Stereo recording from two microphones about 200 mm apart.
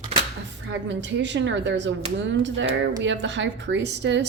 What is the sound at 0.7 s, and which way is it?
A woman's voice, 65° right (ahead or behind).